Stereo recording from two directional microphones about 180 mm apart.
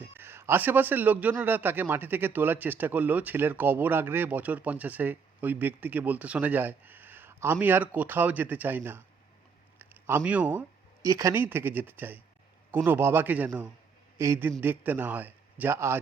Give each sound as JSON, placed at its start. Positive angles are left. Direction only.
{"t": 0.0, "sound": "a man's voice", "side_deg": -15}